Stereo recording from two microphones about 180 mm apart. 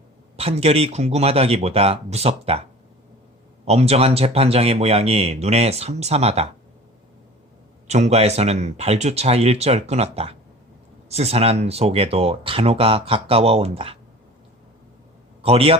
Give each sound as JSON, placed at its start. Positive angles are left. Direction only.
{"t": 0.3, "sound": "speech", "side_deg": -35}
{"t": 3.7, "sound": "speech", "side_deg": -35}
{"t": 7.9, "sound": "speech", "side_deg": -40}
{"t": 15.4, "sound": "a man's voice", "side_deg": -30}